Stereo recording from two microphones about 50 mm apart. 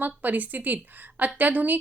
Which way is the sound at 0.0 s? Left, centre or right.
Right.